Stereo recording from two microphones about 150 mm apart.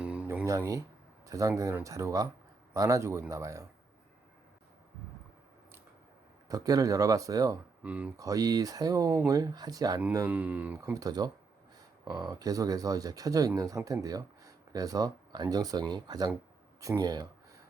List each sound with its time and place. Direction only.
0.0 s a sound: 10° right (ahead or behind)
0.4 s speech: 20° right (ahead or behind)
6.5 s speech: 25° right (ahead or behind)
7.9 s speech: 10° right (ahead or behind)
8.1 s speech: 25° right (ahead or behind)
10.2 s speech: 10° right (ahead or behind)
10.9 s speech: 25° right (ahead or behind)